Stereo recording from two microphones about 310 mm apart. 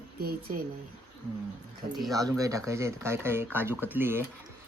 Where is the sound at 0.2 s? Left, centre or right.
Right.